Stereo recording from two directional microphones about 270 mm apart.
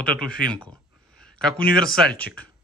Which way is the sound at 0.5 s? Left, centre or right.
Centre.